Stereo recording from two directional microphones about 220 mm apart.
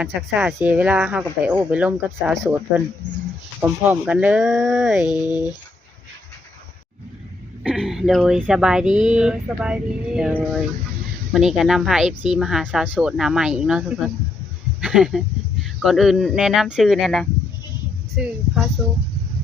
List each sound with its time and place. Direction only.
0.0 s speech: centre (ahead or behind)
5.0 s speech: 20° left (ahead or behind)
7.6 s speech: centre (ahead or behind)